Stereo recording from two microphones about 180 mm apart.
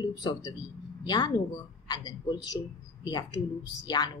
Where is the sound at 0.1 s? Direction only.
25° left (ahead or behind).